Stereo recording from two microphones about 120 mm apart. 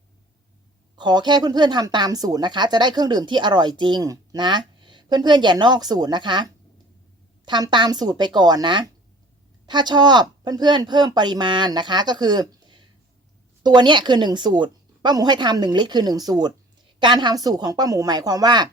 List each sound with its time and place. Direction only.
0.9 s speech: 40° right (ahead or behind)